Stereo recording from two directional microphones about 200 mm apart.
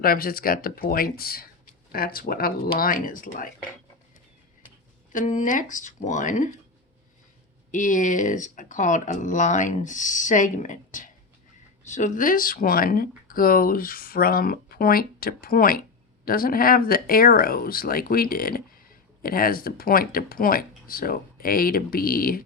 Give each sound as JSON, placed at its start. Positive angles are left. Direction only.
{"t": 0.0, "sound": "speech", "side_deg": 45}
{"t": 5.1, "sound": "speech", "side_deg": 40}
{"t": 7.7, "sound": "speech", "side_deg": 40}